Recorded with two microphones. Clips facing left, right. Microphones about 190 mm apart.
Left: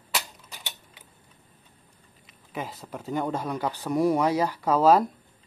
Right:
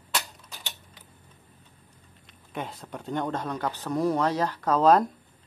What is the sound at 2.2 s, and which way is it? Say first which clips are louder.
Speech: even; centre (ahead or behind).